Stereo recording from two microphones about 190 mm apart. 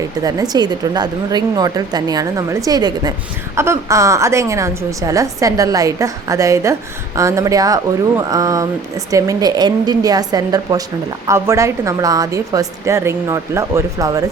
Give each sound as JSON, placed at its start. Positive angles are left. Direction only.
{"t": 0.2, "sound": "a woman's voice", "side_deg": -20}